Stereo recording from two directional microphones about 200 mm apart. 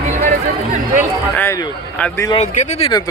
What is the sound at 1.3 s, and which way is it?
A man's voice, 10° left (ahead or behind).